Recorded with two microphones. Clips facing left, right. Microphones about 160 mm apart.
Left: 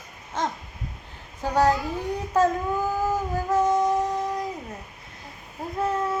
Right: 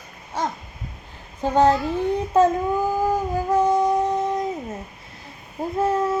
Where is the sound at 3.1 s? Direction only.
15° right (ahead or behind).